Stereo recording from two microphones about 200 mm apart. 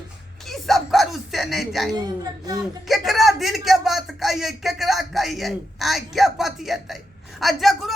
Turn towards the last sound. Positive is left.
turn(degrees=0)  # may be behind; listen again after turning